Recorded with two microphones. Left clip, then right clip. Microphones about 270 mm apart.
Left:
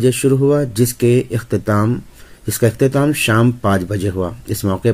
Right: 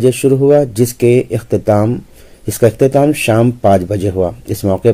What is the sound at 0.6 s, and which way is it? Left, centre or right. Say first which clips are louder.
Speech: right 4 dB; centre.